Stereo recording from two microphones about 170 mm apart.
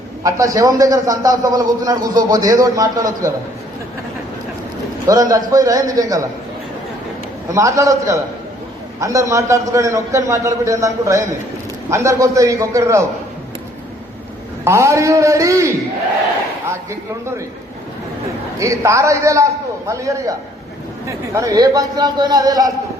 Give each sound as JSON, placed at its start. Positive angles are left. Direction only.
{"t": 0.2, "sound": "a man's voice", "side_deg": -20}
{"t": 5.0, "sound": "a man's voice", "side_deg": -20}
{"t": 7.5, "sound": "a man's voice", "side_deg": -20}
{"t": 14.6, "sound": "a man's voice", "side_deg": -15}
{"t": 18.6, "sound": "a man's voice", "side_deg": -20}